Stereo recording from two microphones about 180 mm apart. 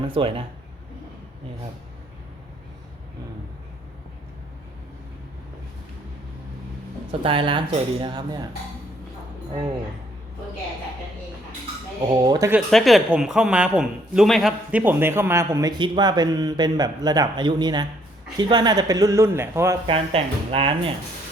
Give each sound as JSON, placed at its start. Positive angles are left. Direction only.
{"t": 0.1, "sound": "a man's voice", "side_deg": -30}
{"t": 7.1, "sound": "a man's voice", "side_deg": -30}
{"t": 12.2, "sound": "a man's voice", "side_deg": -20}
{"t": 12.5, "sound": "a man's voice", "side_deg": 0}
{"t": 19.9, "sound": "speech", "side_deg": -30}